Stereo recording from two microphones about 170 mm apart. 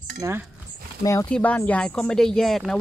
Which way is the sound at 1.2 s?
5° left (ahead or behind).